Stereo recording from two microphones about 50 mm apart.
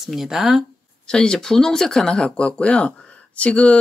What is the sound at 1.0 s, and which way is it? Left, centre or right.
Speech, centre.